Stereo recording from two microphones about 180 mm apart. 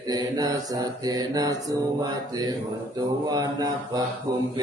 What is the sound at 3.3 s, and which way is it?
Mantra, 20° right (ahead or behind).